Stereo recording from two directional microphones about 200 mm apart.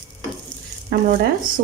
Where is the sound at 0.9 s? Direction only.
50° right (ahead or behind).